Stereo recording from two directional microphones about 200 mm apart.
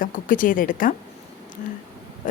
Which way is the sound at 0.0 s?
40° left (ahead or behind).